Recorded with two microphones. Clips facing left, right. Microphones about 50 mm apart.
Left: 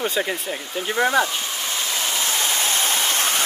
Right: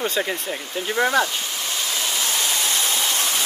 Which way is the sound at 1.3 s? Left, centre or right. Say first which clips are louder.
Left 1 dB; left.